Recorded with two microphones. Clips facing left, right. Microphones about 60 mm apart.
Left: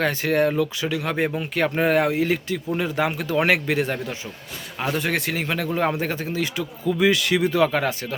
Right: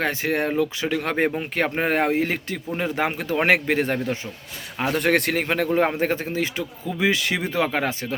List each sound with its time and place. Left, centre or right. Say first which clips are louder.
0.0 s speech: left 3 dB; right
0.9 s speech: right 1 dB; right
1.4 s a man's voice: left 2 dB; right
4.8 s speech: right 4 dB; right